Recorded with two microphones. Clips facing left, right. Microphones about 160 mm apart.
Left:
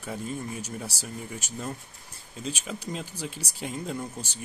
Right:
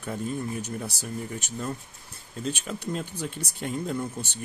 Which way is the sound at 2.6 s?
5° left (ahead or behind).